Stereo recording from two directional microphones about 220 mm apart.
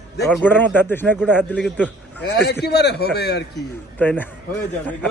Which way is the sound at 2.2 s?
50° left (ahead or behind).